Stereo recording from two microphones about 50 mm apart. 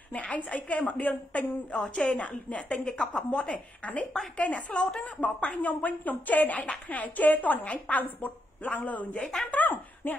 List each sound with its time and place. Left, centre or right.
0.1 s a woman's voice: left
9.2 s speech: centre
9.5 s speech: left